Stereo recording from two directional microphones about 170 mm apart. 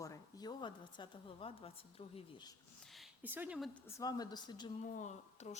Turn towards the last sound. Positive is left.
turn(degrees=45)  # may be behind; listen again after turning